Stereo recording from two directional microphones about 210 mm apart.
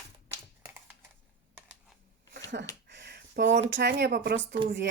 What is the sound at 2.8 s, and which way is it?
A woman's voice, 55° right (ahead or behind).